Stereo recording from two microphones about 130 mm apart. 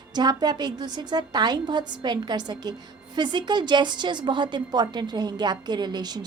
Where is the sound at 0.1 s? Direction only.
35° right (ahead or behind).